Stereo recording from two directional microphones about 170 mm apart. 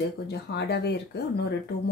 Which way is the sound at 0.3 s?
80° left.